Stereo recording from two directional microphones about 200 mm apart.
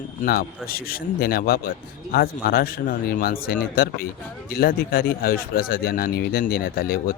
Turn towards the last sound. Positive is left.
turn(degrees=50)  # may be behind; listen again after turning